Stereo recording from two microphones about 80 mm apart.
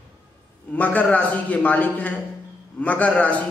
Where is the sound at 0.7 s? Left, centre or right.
Centre.